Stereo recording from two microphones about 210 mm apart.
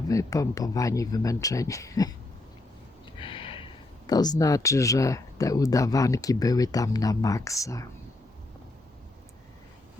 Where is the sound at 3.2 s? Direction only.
25° left (ahead or behind).